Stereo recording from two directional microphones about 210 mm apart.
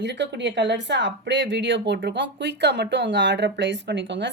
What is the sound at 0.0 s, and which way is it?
Speech, 55° right (ahead or behind).